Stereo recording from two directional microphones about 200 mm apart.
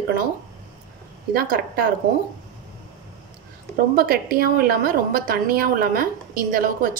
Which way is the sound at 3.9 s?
50° right (ahead or behind).